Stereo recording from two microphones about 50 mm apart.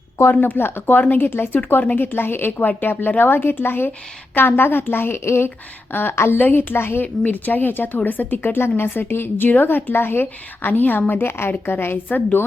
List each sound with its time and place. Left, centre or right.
0.4 s a woman's voice: left
5.9 s a woman's voice: left
7.3 s a woman's voice: left
11.1 s a woman's voice: left
12.0 s speech: left